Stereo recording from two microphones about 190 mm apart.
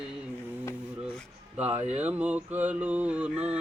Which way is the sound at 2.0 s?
10° right (ahead or behind).